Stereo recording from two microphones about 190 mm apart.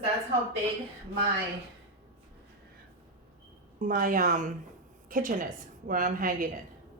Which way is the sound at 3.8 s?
45° right (ahead or behind).